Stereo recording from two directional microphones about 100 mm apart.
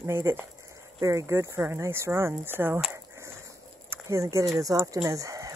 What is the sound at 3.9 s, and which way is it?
Speech, 30° right (ahead or behind).